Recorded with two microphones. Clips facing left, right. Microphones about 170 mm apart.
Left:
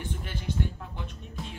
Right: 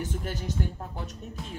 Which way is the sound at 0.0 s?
40° right (ahead or behind).